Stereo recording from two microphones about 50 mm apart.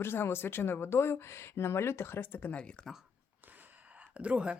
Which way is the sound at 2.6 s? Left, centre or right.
Left.